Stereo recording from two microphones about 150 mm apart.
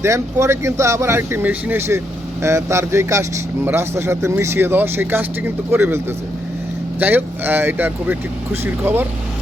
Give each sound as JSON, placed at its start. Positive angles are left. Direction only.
{"t": 0.0, "sound": "speech", "side_deg": -20}
{"t": 7.0, "sound": "speech", "side_deg": -10}